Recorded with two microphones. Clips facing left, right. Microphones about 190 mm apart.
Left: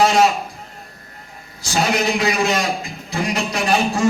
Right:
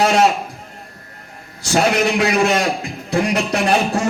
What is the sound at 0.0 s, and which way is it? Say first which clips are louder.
Speech: even; 65° right (ahead or behind).